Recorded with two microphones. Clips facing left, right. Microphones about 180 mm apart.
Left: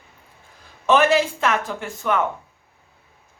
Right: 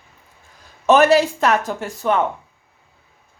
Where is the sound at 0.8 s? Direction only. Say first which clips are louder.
Right 4 dB; 40° right (ahead or behind).